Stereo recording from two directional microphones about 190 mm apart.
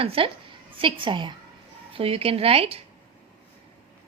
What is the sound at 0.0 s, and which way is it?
A woman's voice, 30° right (ahead or behind).